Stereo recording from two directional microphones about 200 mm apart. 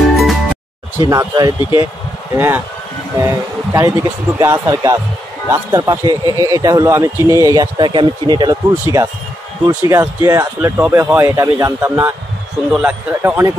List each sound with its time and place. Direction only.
0.9 s speech: 20° right (ahead or behind)
1.6 s speech: 25° left (ahead or behind)
2.3 s a man's voice: 10° right (ahead or behind)